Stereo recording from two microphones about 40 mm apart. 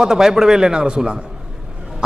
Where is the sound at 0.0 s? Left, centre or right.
Centre.